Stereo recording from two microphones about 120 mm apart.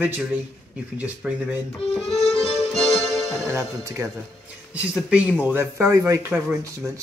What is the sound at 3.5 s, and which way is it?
Speech, 25° right (ahead or behind).